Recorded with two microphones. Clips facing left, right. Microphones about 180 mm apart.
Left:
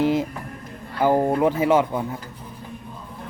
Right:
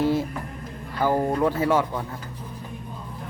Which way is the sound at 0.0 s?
15° left (ahead or behind).